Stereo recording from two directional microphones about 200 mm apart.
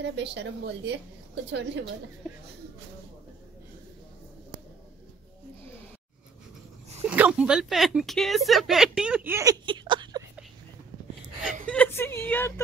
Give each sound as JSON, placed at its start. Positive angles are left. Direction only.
{"t": 0.0, "sound": "a woman's voice", "side_deg": -60}
{"t": 7.1, "sound": "speech", "side_deg": -5}
{"t": 11.6, "sound": "speech", "side_deg": 5}